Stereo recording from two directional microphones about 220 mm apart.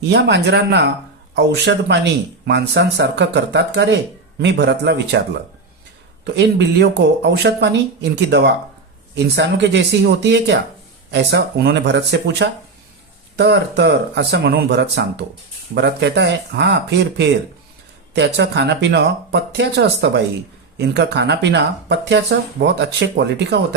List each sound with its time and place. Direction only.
0.1 s speech: 50° right (ahead or behind)
6.2 s speech: 50° right (ahead or behind)